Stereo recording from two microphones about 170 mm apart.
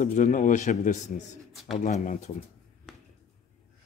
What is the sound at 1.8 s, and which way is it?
Speech, 45° left (ahead or behind).